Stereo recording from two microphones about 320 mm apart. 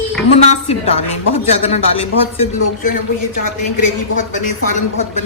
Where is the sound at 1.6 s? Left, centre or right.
Centre.